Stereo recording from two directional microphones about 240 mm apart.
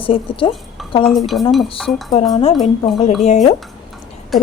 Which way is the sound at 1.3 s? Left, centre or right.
Centre.